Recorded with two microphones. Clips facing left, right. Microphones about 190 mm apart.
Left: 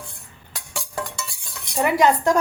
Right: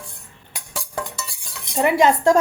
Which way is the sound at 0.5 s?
5° right (ahead or behind).